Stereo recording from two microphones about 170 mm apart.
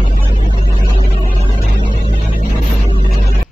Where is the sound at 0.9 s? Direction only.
35° left (ahead or behind).